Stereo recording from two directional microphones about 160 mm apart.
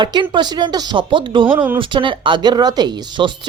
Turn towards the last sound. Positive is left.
turn(degrees=-30)  # may be behind; listen again after turning